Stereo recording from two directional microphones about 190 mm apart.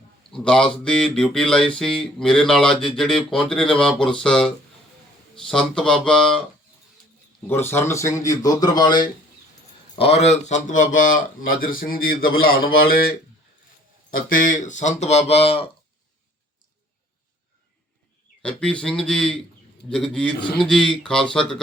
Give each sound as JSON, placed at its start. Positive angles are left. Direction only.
{"t": 0.3, "sound": "speech", "side_deg": 5}
{"t": 7.4, "sound": "a man's voice", "side_deg": 10}
{"t": 9.9, "sound": "speech", "side_deg": 30}
{"t": 18.4, "sound": "speech", "side_deg": 5}